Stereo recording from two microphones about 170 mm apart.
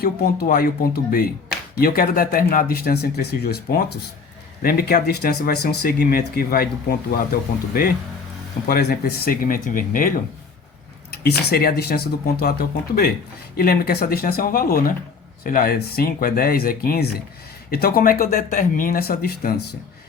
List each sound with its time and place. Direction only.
0.0 s speech: 65° left (ahead or behind)
8.6 s speech: 70° left (ahead or behind); by 10.1 s 55° left (ahead or behind)
11.1 s speech: 65° left (ahead or behind)